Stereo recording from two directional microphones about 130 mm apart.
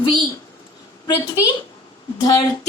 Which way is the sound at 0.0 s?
35° left (ahead or behind).